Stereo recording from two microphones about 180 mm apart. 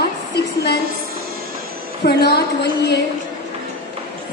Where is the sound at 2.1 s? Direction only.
65° left (ahead or behind).